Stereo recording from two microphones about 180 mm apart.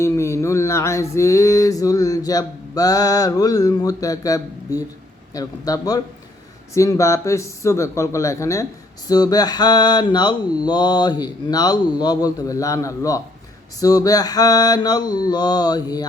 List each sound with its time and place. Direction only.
0.0 s a sound: 15° left (ahead or behind)
5.3 s mantra: 20° left (ahead or behind)
6.7 s speech: 15° left (ahead or behind)
9.0 s mantra: 20° left (ahead or behind)